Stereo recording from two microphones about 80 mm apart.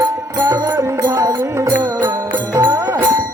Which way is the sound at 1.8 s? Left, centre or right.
Right.